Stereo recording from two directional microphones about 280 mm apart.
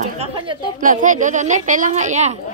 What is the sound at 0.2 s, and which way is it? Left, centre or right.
A woman's voice, right.